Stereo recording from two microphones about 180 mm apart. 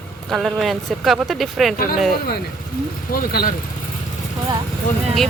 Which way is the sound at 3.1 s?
55° left (ahead or behind).